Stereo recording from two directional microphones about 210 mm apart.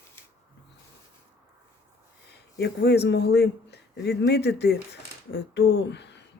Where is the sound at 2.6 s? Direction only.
50° left (ahead or behind).